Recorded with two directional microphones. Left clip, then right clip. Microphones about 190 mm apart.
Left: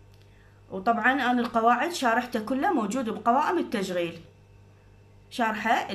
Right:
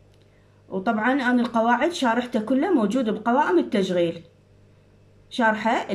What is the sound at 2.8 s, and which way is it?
Speech, 40° left (ahead or behind).